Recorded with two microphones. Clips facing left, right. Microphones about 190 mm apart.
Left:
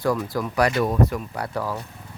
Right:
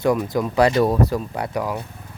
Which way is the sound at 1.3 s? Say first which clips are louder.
Right 3 dB; 20° right (ahead or behind).